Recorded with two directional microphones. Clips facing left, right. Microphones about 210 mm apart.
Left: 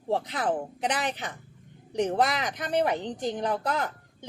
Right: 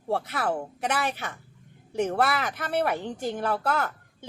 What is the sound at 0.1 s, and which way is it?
Speech, 15° left (ahead or behind).